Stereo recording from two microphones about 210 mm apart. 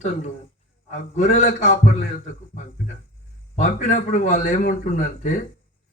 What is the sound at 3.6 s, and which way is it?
Speech, 35° left (ahead or behind).